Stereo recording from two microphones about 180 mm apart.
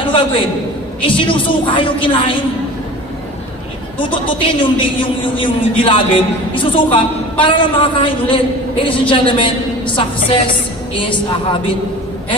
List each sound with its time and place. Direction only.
0.0 s a sound: 30° left (ahead or behind)
1.0 s a woman's voice: 30° left (ahead or behind)
4.0 s a woman's voice: 25° left (ahead or behind)